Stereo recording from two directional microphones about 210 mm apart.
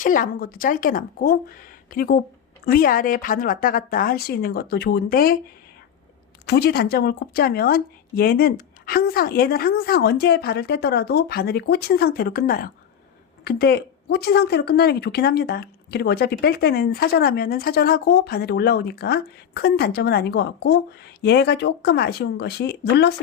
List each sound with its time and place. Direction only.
0.0 s speech: 40° left (ahead or behind)
6.4 s speech: 50° left (ahead or behind)